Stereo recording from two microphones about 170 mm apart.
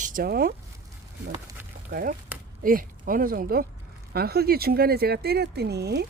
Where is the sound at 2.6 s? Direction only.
55° right (ahead or behind); by 6.0 s 75° right (ahead or behind).